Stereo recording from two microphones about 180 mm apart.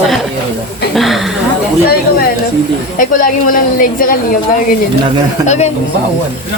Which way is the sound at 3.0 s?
45° left (ahead or behind).